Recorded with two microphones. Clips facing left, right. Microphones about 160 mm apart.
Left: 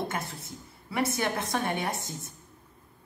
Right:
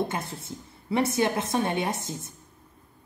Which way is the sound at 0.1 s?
25° right (ahead or behind).